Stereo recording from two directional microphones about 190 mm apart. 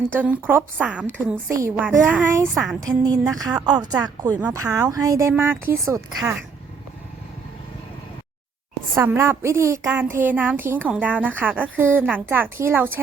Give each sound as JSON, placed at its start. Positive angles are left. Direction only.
{"t": 0.2, "sound": "speech", "side_deg": -10}
{"t": 9.0, "sound": "speech", "side_deg": -15}